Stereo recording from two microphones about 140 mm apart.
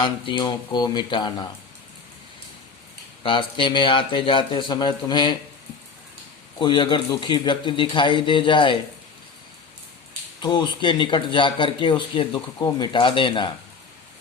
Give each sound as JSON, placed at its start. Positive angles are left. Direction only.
{"t": 0.0, "sound": "a man's voice", "side_deg": 35}
{"t": 3.2, "sound": "a man's voice", "side_deg": 35}
{"t": 6.6, "sound": "a man's voice", "side_deg": 35}
{"t": 10.4, "sound": "a man's voice", "side_deg": 35}